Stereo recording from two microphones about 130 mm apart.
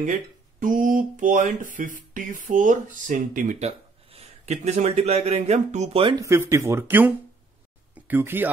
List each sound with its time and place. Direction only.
0.6 s speech: 90° right
3.6 s speech: 55° right (ahead or behind)
6.2 s speech: 20° right (ahead or behind)